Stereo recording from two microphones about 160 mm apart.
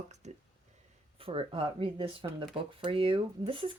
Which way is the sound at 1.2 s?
35° right (ahead or behind).